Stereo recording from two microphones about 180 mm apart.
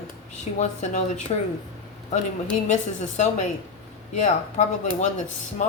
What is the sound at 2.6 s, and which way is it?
Speech, 40° left (ahead or behind).